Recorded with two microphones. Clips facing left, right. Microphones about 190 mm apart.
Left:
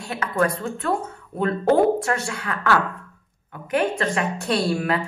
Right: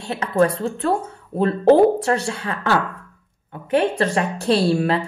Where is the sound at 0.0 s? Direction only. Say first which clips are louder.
Right 4 dB; 30° right (ahead or behind).